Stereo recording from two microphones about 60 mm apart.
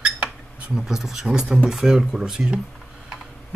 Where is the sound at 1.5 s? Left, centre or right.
Centre.